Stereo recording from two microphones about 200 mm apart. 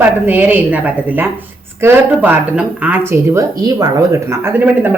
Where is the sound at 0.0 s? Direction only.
10° right (ahead or behind).